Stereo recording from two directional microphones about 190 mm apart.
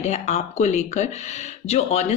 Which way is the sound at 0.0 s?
35° left (ahead or behind).